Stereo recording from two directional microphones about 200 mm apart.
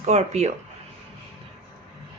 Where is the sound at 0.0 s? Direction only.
35° right (ahead or behind).